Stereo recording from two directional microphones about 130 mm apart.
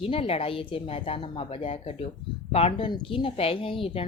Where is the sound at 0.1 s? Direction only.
45° left (ahead or behind).